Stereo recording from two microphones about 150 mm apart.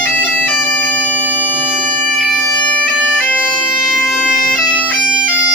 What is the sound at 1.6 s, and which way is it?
Bagpipes, 5° right (ahead or behind).